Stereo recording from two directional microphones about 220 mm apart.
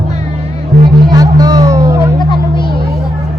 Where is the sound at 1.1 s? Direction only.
15° right (ahead or behind).